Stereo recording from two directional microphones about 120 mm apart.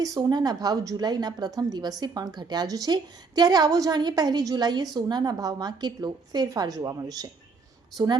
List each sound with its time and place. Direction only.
0.0 s a woman's voice: 30° right (ahead or behind)